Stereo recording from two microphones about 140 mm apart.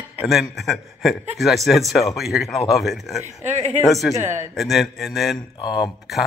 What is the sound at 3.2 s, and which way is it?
Speech, 55° right (ahead or behind).